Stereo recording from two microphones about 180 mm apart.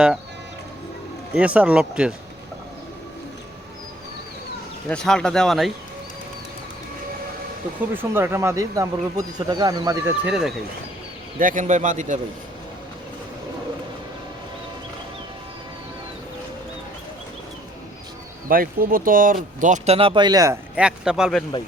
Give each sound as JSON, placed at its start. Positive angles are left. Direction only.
{"t": 1.3, "sound": "speech", "side_deg": -5}
{"t": 4.9, "sound": "speech", "side_deg": 5}
{"t": 7.9, "sound": "speech", "side_deg": -10}
{"t": 10.2, "sound": "speech", "side_deg": -5}
{"t": 11.3, "sound": "speech", "side_deg": -45}
{"t": 18.4, "sound": "speech", "side_deg": -50}
{"t": 20.7, "sound": "speech", "side_deg": -5}